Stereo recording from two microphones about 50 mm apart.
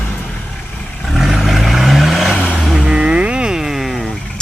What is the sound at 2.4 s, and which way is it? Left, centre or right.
Vehicle, centre.